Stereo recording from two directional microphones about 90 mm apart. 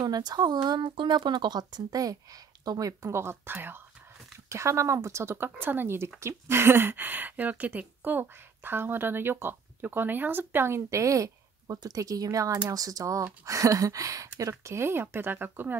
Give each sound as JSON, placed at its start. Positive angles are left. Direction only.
{"t": 0.0, "sound": "speech", "side_deg": -50}
{"t": 2.9, "sound": "speech", "side_deg": -30}